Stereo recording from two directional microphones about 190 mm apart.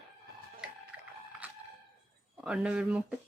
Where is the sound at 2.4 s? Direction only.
5° right (ahead or behind).